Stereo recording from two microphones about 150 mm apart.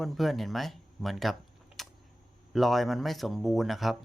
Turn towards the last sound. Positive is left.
turn(degrees=0)  # may be behind; listen again after turning